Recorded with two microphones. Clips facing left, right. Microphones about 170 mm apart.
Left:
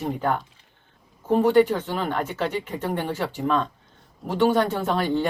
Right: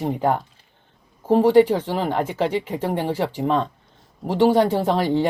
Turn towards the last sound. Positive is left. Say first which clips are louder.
# right 4 dB
turn(degrees=-30)  # may be behind; listen again after turning